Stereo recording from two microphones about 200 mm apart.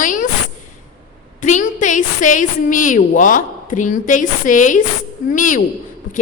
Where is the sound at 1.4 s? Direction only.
40° left (ahead or behind).